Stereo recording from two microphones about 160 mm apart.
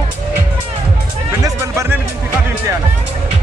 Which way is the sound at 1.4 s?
15° right (ahead or behind).